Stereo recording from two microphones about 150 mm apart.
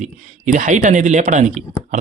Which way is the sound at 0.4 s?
55° right (ahead or behind).